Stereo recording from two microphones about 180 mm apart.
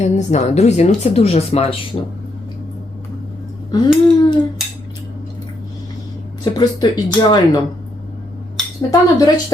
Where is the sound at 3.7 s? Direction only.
20° left (ahead or behind).